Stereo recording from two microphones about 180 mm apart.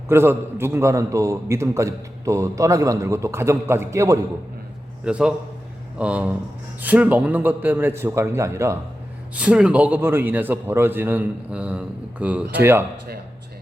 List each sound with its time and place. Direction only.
0.1 s a man's voice: 15° right (ahead or behind)
5.0 s a man's voice: 5° right (ahead or behind)